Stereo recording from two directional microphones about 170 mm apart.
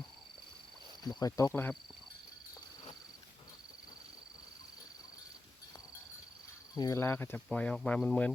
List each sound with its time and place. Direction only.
1.0 s speech: 20° left (ahead or behind)
6.7 s speech: 20° left (ahead or behind)